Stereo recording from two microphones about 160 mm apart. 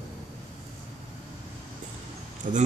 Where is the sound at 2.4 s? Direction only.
50° right (ahead or behind).